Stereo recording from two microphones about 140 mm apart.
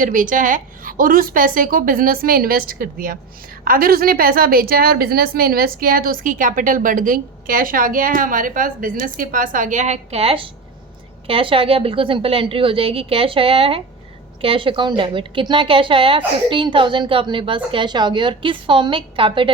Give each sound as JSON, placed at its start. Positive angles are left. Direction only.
{"t": 0.0, "sound": "a woman's voice", "side_deg": -70}